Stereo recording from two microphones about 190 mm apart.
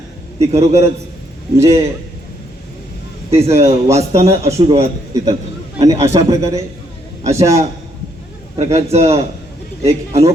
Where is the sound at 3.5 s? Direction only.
15° right (ahead or behind).